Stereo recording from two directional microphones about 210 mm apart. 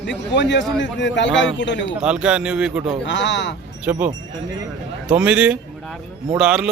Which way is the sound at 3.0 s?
55° left (ahead or behind).